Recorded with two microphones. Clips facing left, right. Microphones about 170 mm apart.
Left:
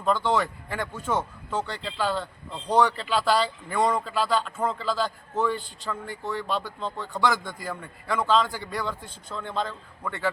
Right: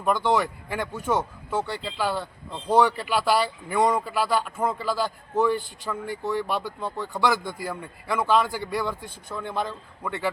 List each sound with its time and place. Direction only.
0.0 s speech: 10° right (ahead or behind)